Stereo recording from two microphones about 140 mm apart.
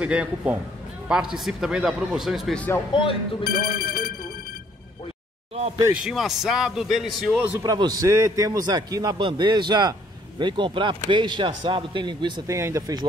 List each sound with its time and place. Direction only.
0.0 s a man's voice: 10° right (ahead or behind)
2.9 s speech: 40° left (ahead or behind)
3.4 s speech: 90° left
6.0 s a man's voice: 5° right (ahead or behind)
7.6 s a man's voice: 30° right (ahead or behind)
12.5 s a man's voice: 20° right (ahead or behind)